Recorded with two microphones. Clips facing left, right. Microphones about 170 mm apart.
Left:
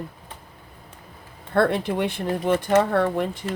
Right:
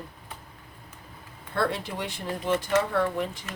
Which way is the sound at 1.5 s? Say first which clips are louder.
Left 8 dB; 55° left (ahead or behind).